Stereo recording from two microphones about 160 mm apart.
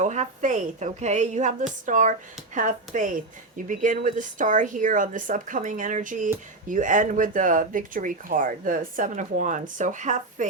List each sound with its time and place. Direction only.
0.0 s a woman's voice: 50° right (ahead or behind)